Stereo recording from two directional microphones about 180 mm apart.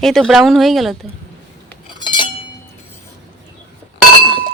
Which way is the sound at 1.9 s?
25° left (ahead or behind).